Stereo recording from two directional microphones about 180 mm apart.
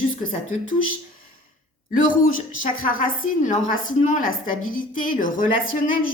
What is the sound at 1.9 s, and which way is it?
A woman's voice, 50° left (ahead or behind).